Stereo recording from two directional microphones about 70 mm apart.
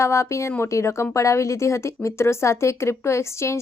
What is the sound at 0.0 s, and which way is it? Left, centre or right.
Speech, left.